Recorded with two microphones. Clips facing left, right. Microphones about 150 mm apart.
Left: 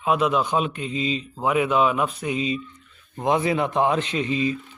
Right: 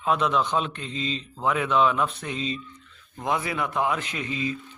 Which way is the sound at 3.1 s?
20° left (ahead or behind).